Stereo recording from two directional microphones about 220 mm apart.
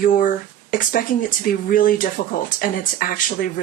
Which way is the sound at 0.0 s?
40° left (ahead or behind).